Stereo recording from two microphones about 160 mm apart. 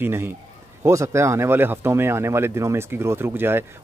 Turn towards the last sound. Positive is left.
turn(degrees=-15)  # may be behind; listen again after turning